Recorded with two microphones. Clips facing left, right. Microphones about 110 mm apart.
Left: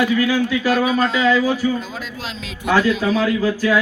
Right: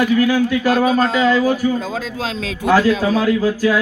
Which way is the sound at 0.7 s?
35° right (ahead or behind).